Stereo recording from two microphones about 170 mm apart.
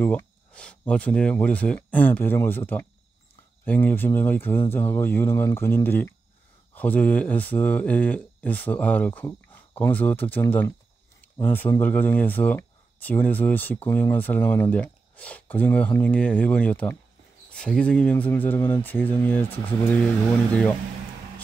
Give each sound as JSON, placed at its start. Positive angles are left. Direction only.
{"t": 0.0, "sound": "speech", "side_deg": 10}